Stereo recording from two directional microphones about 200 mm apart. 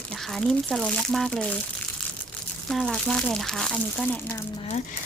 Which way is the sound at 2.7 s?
Centre (ahead or behind).